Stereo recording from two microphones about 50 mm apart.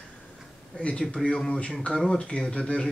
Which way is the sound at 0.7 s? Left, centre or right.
Centre.